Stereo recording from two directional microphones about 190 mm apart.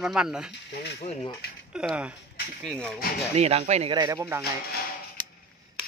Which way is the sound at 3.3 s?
35° right (ahead or behind).